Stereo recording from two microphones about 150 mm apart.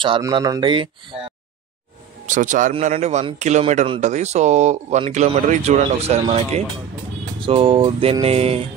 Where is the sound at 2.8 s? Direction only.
50° right (ahead or behind).